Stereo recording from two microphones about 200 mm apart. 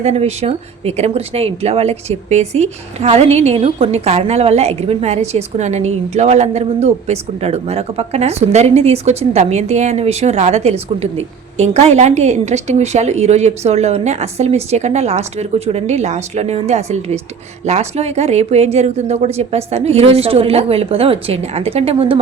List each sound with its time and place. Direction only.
0.0 s speech: 35° right (ahead or behind)